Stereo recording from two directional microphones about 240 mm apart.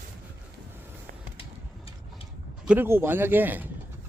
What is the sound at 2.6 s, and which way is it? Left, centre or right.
Speech, centre.